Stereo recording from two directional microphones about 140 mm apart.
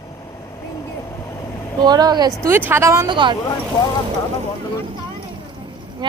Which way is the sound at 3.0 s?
35° right (ahead or behind).